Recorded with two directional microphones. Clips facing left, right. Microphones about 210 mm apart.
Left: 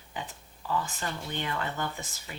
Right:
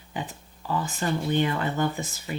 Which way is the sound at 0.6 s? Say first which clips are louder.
Right 3 dB; 25° right (ahead or behind).